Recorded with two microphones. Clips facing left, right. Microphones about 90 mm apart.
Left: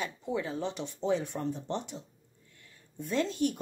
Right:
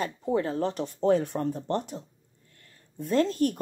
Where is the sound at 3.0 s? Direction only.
45° right (ahead or behind).